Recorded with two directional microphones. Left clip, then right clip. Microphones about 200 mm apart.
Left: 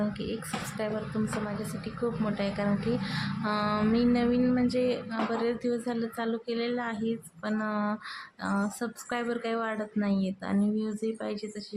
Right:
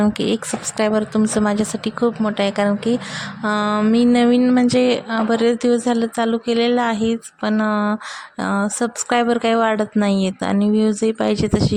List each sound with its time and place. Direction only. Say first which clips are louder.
0.0 s a woman's voice: right 14 dB; 50° right (ahead or behind)
3.4 s a sound: right 11 dB; 40° right (ahead or behind)
8.4 s a woman's voice: right 12 dB; 40° right (ahead or behind)